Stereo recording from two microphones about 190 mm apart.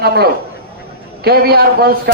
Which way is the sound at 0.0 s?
60° right (ahead or behind).